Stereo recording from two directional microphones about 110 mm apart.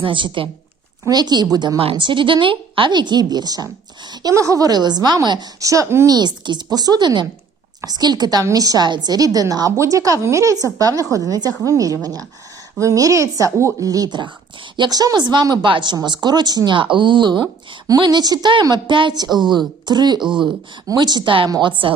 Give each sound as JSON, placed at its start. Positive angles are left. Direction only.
{"t": 0.0, "sound": "speech", "side_deg": -50}
{"t": 1.0, "sound": "a woman's voice", "side_deg": -40}
{"t": 1.8, "sound": "a woman's voice", "side_deg": -55}
{"t": 6.1, "sound": "a woman's voice", "side_deg": -40}
{"t": 20.2, "sound": "speech", "side_deg": -5}
{"t": 20.8, "sound": "a woman's voice", "side_deg": -40}